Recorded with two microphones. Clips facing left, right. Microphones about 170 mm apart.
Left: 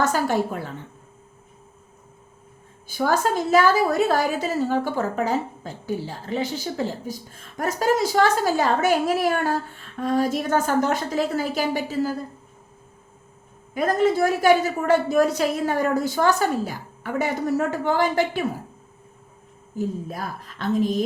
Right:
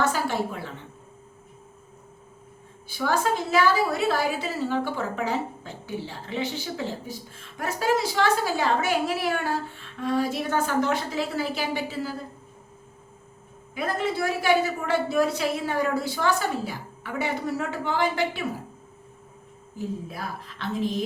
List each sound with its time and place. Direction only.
0.0 s a woman's voice: 45° left (ahead or behind)
2.8 s a woman's voice: 45° left (ahead or behind)
13.7 s a woman's voice: 45° left (ahead or behind)
20.1 s a woman's voice: 45° left (ahead or behind)